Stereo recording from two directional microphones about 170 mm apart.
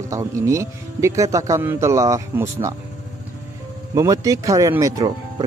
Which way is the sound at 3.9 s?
20° right (ahead or behind).